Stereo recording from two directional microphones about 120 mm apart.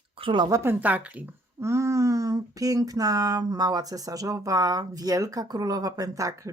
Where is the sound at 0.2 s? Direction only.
45° right (ahead or behind).